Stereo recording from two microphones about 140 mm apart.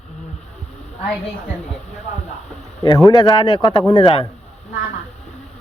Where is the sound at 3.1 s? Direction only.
30° left (ahead or behind).